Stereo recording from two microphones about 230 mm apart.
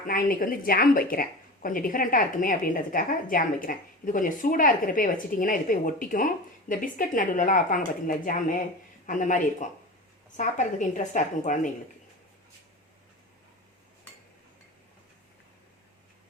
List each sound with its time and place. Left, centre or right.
0.1 s a woman's voice: left